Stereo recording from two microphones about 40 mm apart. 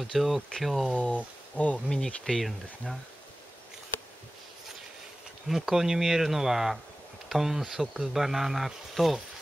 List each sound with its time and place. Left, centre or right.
0.0 s speech: centre
0.9 s speech: left
1.9 s speech: centre
5.5 s speech: centre